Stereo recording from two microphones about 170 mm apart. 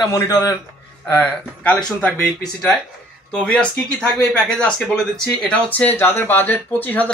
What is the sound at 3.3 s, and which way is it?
Speech, 5° left (ahead or behind).